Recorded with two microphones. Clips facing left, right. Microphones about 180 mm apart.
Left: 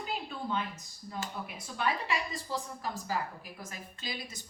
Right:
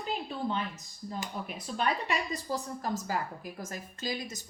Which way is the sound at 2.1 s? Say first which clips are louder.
Right 2 dB; 40° right (ahead or behind).